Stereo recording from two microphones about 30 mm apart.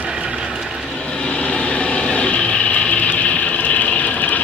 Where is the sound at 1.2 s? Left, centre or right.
Left.